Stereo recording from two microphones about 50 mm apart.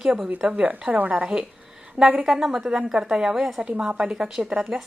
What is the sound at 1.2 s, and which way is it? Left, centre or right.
A woman's voice, centre.